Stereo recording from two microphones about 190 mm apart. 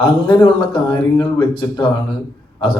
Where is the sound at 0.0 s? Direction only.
25° left (ahead or behind).